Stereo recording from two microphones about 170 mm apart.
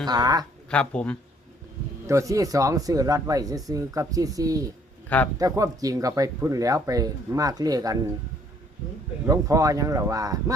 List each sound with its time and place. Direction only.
0.0 s speech: 25° right (ahead or behind)
0.7 s speech: 5° left (ahead or behind)
2.0 s speech: 20° right (ahead or behind)
5.0 s a man's voice: 10° left (ahead or behind)
5.4 s speech: 20° right (ahead or behind)
9.2 s speech: 20° right (ahead or behind)